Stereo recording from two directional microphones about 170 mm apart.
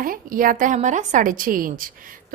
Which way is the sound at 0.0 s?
55° right (ahead or behind).